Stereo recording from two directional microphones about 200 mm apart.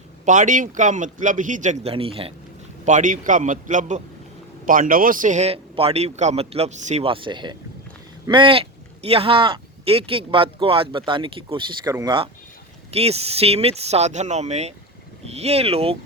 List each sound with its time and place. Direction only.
0.3 s a man's voice: 40° right (ahead or behind)
2.8 s a man's voice: 40° right (ahead or behind)